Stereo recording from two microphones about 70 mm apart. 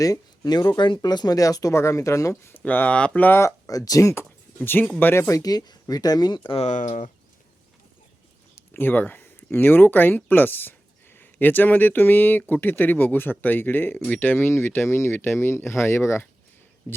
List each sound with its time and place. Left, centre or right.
0.0 s speech: left
0.8 s speech: left
1.7 s speech: left
2.5 s speech: left
3.2 s speech: left
3.7 s speech: left
4.5 s speech: left
5.3 s speech: left
8.5 s speech: left